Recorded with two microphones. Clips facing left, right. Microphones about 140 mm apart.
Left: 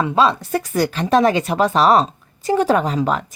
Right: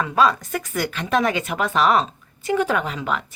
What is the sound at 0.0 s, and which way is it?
Speech, 25° left (ahead or behind).